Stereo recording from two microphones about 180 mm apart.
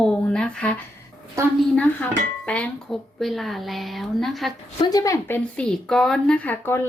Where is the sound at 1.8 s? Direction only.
5° left (ahead or behind).